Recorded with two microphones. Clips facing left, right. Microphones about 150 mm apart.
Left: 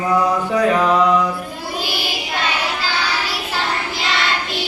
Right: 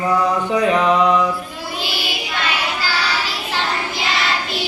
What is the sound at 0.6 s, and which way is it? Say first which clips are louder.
Mantra: left 1 dB; centre (ahead or behind).